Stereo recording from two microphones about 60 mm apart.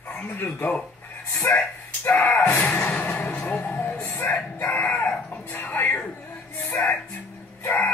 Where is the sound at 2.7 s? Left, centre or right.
Left.